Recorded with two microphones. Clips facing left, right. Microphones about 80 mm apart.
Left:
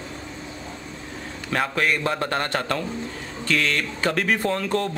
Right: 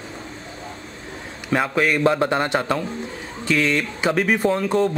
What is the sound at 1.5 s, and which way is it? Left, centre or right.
Speech, centre.